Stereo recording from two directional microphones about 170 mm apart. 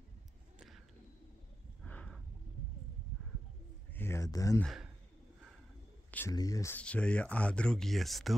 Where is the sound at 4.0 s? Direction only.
15° left (ahead or behind).